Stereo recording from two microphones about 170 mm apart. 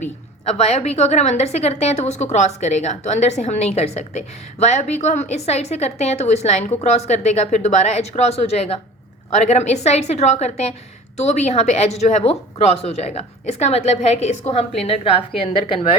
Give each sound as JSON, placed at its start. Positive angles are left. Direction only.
{"t": 0.0, "sound": "a woman's voice", "side_deg": 40}